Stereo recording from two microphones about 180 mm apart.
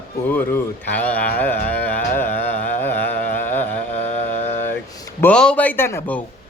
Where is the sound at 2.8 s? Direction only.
10° left (ahead or behind).